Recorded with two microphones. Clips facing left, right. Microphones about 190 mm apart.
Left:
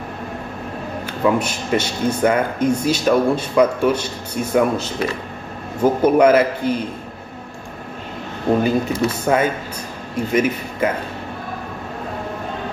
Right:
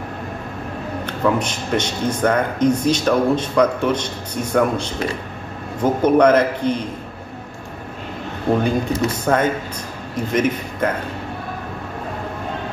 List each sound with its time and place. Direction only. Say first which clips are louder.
1.0 s speech: left 1 dB; 10° left (ahead or behind)
8.6 s speech: left 1 dB; 5° left (ahead or behind)